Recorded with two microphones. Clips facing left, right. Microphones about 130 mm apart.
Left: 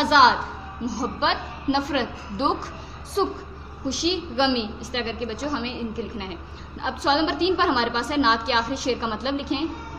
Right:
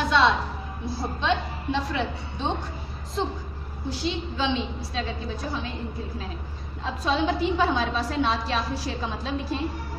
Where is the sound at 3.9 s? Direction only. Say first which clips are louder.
Left 4 dB; 80° left.